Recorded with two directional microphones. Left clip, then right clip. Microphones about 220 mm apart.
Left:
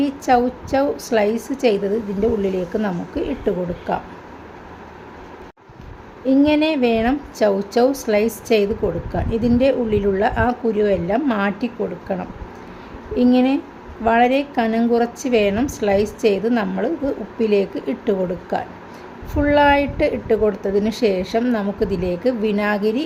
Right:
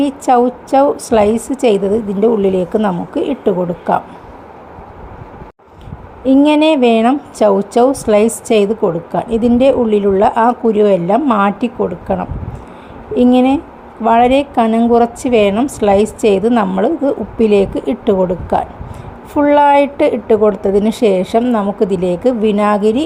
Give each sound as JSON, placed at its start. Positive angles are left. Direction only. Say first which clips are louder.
{"t": 0.0, "sound": "a woman's voice", "louder": "right 6 dB", "side_deg": -15}
{"t": 6.2, "sound": "a woman's voice", "louder": "right 6 dB", "side_deg": -20}